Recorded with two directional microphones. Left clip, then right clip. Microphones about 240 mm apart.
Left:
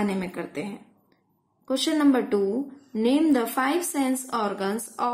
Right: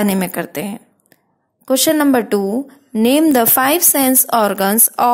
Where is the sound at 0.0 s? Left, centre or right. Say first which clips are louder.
Right 10 dB; right.